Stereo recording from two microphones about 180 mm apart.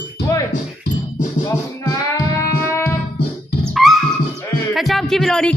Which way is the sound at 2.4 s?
15° left (ahead or behind).